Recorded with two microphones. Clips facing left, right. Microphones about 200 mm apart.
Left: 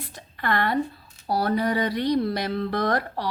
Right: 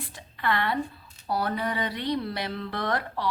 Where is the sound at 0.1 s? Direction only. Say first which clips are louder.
Left 2 dB; 45° left (ahead or behind).